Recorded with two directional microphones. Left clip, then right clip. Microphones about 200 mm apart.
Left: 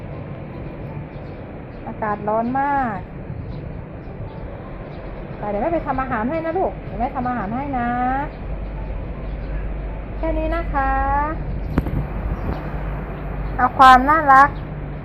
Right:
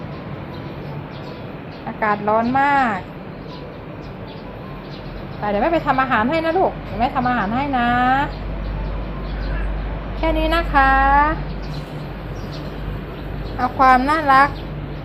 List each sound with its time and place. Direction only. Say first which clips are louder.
2.0 s a woman's voice: right 4 dB; 20° right (ahead or behind)
5.5 s a woman's voice: right 4 dB; 15° right (ahead or behind)
10.2 s a woman's voice: right 4 dB; 20° right (ahead or behind)
13.6 s a woman's voice: left 3 dB; 15° right (ahead or behind)